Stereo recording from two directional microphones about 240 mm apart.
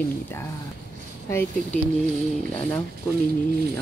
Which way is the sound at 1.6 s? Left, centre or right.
Right.